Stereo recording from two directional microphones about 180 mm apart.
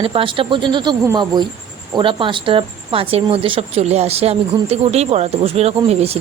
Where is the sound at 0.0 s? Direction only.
30° right (ahead or behind).